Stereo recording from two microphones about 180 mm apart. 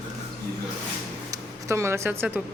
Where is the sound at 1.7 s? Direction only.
15° right (ahead or behind).